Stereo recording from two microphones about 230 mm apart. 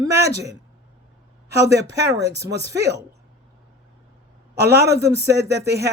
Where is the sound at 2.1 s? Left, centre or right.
Centre.